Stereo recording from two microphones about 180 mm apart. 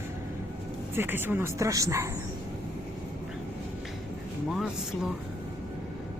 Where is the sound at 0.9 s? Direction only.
10° right (ahead or behind).